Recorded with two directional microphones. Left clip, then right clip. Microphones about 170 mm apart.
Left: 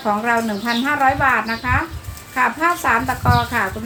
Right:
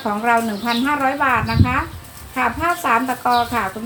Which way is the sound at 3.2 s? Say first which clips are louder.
Right 1 dB; 15° left (ahead or behind).